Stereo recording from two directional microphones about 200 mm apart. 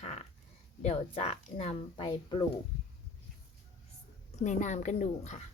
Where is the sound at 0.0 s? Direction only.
30° left (ahead or behind).